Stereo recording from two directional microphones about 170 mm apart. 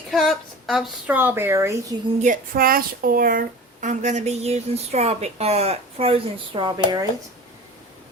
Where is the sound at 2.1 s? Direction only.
50° right (ahead or behind); by 7.0 s 25° right (ahead or behind).